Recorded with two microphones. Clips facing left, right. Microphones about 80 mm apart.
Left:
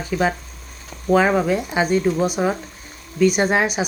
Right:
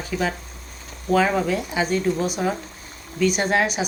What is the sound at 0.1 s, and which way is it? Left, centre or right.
Speech, centre.